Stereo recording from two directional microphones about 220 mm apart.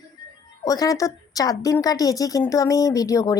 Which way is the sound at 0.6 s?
15° left (ahead or behind).